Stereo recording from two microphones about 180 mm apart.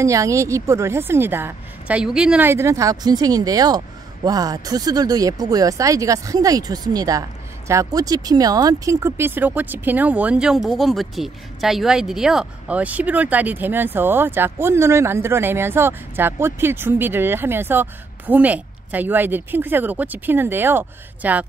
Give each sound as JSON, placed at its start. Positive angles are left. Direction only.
{"t": 0.0, "sound": "a woman's voice", "side_deg": -15}